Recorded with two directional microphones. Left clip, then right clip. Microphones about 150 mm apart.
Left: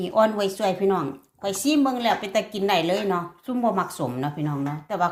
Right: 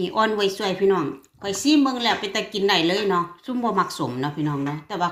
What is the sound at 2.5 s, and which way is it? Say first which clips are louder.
Speech: right 4 dB; 50° left (ahead or behind).